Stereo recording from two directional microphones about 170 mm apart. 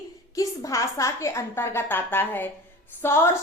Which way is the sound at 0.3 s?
20° left (ahead or behind).